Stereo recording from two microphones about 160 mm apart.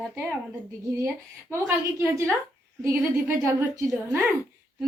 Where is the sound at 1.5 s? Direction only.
20° right (ahead or behind).